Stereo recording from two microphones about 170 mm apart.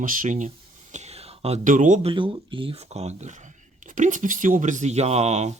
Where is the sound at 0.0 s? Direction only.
50° right (ahead or behind).